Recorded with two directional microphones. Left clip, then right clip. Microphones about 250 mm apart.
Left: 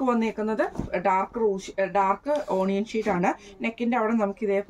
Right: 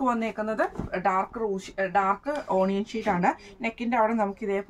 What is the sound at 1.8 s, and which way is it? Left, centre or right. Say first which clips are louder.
A woman's voice: even; centre.